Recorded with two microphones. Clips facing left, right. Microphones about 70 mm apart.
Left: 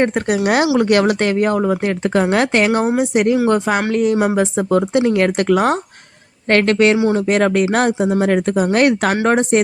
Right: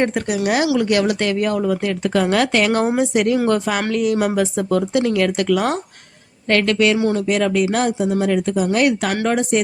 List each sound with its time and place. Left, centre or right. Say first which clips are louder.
0.4 s speech: left 3 dB; left
6.9 s speech: left 3 dB; left
7.3 s speech: left 3 dB; left